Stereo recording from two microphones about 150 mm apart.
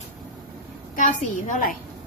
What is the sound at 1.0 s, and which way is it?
Speech, 60° left (ahead or behind).